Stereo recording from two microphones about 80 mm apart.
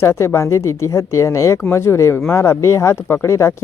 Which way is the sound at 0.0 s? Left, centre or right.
Left.